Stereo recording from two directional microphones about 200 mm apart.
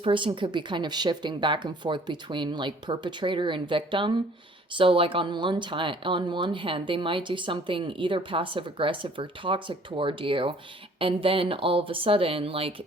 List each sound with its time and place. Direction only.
0.0 s speech: 25° right (ahead or behind)